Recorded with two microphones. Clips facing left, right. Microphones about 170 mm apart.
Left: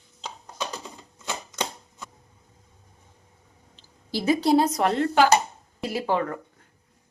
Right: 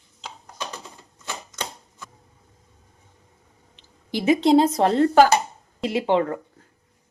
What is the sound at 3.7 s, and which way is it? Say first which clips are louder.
Speech: right 2 dB; 20° right (ahead or behind).